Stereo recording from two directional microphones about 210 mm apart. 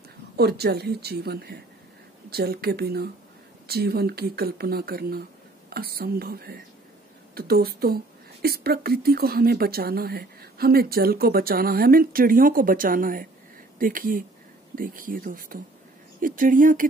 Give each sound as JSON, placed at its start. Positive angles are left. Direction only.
{"t": 0.4, "sound": "a woman's voice", "side_deg": -50}